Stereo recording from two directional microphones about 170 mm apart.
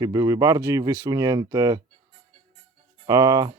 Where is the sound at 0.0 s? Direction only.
20° right (ahead or behind).